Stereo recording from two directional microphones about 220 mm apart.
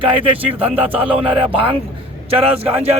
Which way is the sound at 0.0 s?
25° right (ahead or behind).